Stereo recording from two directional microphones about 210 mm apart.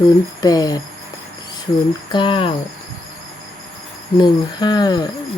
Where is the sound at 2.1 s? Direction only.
25° left (ahead or behind).